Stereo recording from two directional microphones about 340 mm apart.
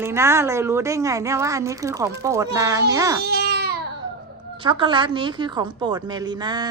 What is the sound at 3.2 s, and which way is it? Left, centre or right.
Baby cry, right.